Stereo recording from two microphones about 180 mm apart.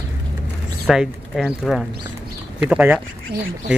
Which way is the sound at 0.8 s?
Centre (ahead or behind).